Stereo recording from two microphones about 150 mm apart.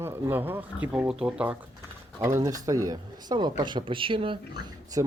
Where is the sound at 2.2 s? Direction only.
20° right (ahead or behind); by 4.3 s 35° right (ahead or behind).